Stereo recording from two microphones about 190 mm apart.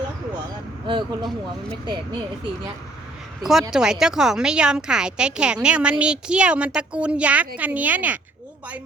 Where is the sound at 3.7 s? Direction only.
5° right (ahead or behind).